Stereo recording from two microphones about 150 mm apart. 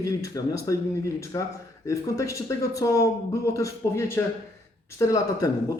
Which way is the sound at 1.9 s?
20° left (ahead or behind).